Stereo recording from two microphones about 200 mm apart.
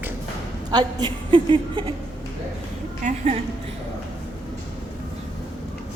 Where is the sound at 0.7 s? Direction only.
20° right (ahead or behind).